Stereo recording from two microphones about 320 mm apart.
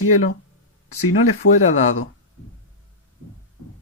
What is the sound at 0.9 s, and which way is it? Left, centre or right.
Speech, left.